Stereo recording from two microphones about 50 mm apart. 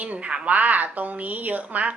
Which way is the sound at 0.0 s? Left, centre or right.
Right.